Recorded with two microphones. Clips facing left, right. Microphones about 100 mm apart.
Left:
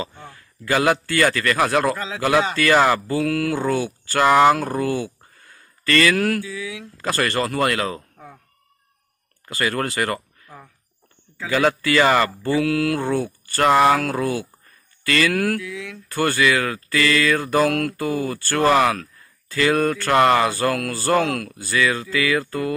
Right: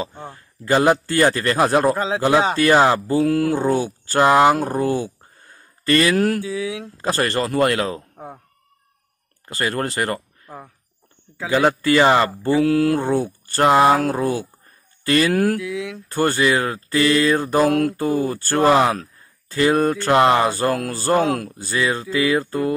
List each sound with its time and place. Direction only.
0.2 s speech: 25° right (ahead or behind)
9.5 s speech: 35° right (ahead or behind)
11.3 s speech: 20° right (ahead or behind)
15.5 s speech: 15° right (ahead or behind)
17.6 s mantra: 10° right (ahead or behind)
17.9 s speech: 25° right (ahead or behind)
20.8 s speech: centre (ahead or behind)
21.1 s mantra: 15° right (ahead or behind)
21.5 s speech: 25° right (ahead or behind)